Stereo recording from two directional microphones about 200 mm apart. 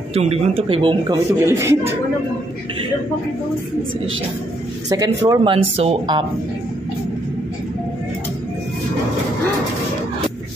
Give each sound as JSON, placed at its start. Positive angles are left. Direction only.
{"t": 0.1, "sound": "speech", "side_deg": -30}
{"t": 1.4, "sound": "speech", "side_deg": -10}
{"t": 4.8, "sound": "speech", "side_deg": -20}